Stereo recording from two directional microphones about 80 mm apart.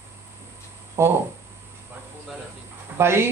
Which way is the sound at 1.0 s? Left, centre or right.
Right.